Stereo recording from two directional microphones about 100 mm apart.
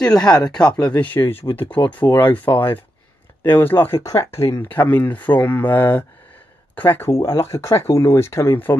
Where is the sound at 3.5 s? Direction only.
20° left (ahead or behind).